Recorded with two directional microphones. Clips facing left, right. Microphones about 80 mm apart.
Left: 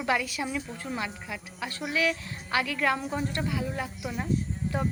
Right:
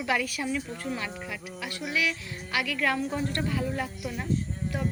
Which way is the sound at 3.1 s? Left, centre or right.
Centre.